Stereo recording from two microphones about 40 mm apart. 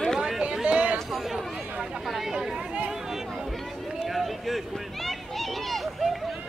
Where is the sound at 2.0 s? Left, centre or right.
Centre.